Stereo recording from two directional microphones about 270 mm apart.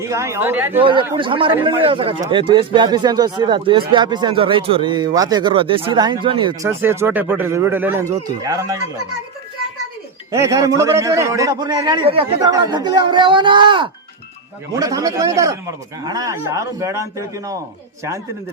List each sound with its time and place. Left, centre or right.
0.0 s speech: centre
0.8 s speech: centre
10.3 s speech: centre